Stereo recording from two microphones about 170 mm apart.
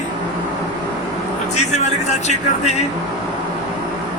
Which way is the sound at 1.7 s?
40° left (ahead or behind).